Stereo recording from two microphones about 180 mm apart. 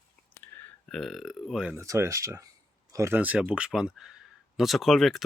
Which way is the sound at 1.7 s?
15° right (ahead or behind).